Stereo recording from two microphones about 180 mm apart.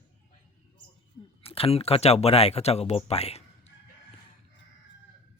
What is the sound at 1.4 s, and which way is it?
Speech, 30° left (ahead or behind).